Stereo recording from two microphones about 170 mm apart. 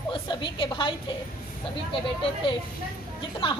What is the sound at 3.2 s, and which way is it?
Speech, 30° left (ahead or behind).